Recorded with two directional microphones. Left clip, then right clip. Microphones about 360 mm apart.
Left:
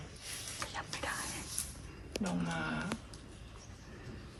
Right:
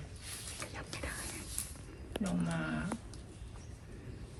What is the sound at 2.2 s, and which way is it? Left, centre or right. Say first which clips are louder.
Speech: left 1 dB; centre.